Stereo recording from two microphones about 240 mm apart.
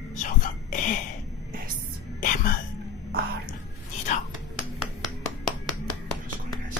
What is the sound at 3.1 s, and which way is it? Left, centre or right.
Music, right.